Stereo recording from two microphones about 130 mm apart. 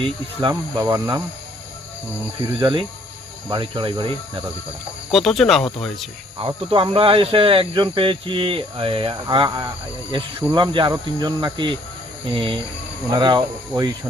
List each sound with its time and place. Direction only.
0.4 s speech: 30° right (ahead or behind)
2.6 s speech: 40° right (ahead or behind)
5.1 s speech: centre (ahead or behind)
6.7 s speech: 40° right (ahead or behind)